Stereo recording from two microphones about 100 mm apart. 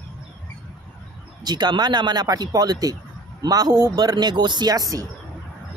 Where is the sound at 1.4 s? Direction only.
45° right (ahead or behind).